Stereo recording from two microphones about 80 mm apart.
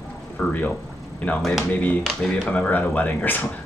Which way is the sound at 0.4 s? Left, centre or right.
Centre.